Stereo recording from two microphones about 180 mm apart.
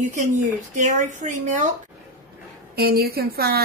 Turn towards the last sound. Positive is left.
turn(degrees=-60)  # may be behind; listen again after turning